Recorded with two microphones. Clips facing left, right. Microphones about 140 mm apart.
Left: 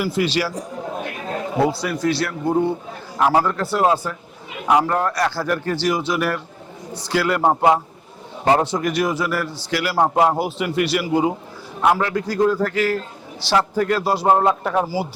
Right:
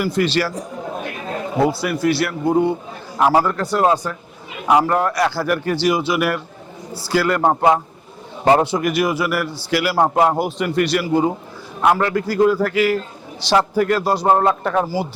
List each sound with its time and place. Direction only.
0.0 s speech: 10° left (ahead or behind)
1.8 s a man's voice: 5° right (ahead or behind)
4.7 s a man's voice: 10° right (ahead or behind)
8.4 s a man's voice: 10° right (ahead or behind)
13.8 s speech: centre (ahead or behind)